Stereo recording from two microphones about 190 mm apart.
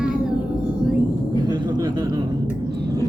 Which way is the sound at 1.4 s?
20° right (ahead or behind).